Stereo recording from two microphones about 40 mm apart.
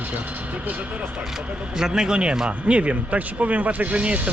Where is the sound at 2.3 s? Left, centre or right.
Right.